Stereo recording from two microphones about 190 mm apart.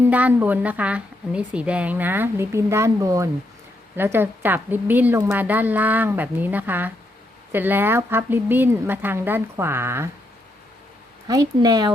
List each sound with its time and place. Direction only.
0.0 s a woman's voice: 10° right (ahead or behind)
11.3 s speech: 20° right (ahead or behind)